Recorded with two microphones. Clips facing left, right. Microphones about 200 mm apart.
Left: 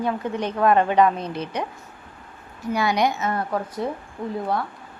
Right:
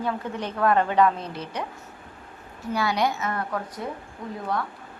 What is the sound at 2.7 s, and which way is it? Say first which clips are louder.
Speech: left 3 dB; 15° left (ahead or behind).